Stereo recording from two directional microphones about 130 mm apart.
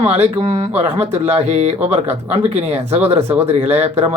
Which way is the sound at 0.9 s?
55° right (ahead or behind).